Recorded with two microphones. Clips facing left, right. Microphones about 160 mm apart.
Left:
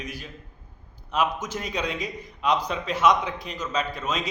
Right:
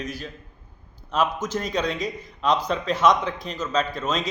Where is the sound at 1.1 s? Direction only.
10° left (ahead or behind).